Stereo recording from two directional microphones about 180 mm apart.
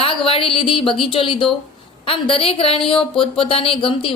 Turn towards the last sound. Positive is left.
turn(degrees=30)  # may be behind; listen again after turning